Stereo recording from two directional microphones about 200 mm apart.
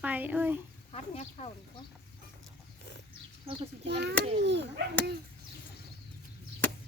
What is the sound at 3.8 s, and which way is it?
Speech, 60° right (ahead or behind).